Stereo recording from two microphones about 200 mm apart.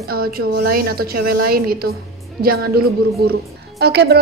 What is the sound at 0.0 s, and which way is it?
A woman's voice, 50° right (ahead or behind).